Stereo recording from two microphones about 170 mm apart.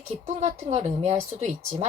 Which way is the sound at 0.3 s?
40° right (ahead or behind).